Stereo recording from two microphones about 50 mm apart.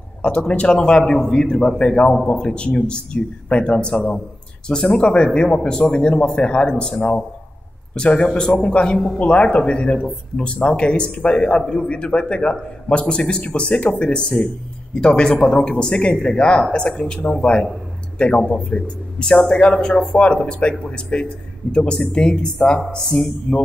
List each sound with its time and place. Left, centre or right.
0.2 s speech: left